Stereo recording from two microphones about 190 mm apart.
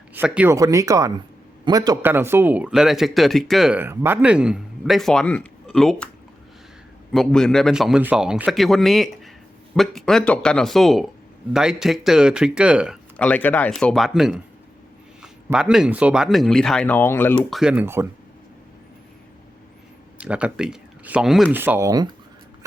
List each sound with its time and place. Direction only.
0.1 s a man's voice: 10° right (ahead or behind)
7.1 s a man's voice: 5° left (ahead or behind)
13.1 s a man's voice: 10° left (ahead or behind)
15.5 s a man's voice: 5° right (ahead or behind); by 17.4 s 10° left (ahead or behind)
17.5 s speech: 5° right (ahead or behind)
20.1 s speech: 5° right (ahead or behind)
21.6 s speech: 15° right (ahead or behind)